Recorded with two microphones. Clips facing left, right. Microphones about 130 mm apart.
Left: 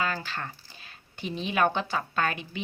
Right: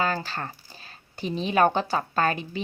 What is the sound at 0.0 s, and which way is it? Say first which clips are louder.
Speech: right 4 dB; 35° right (ahead or behind).